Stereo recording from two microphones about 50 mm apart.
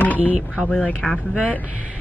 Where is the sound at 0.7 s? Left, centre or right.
Left.